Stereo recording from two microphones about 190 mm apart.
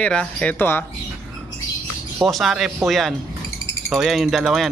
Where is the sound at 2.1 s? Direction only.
Centre (ahead or behind).